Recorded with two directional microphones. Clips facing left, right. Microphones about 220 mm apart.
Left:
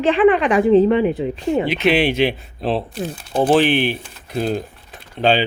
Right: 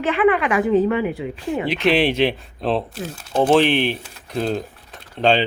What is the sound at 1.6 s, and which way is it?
Speech, centre (ahead or behind).